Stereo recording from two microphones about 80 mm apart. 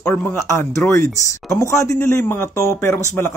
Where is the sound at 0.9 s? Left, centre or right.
Left.